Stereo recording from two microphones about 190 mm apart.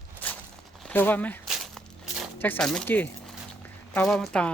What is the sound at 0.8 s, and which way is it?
Speech, 10° left (ahead or behind).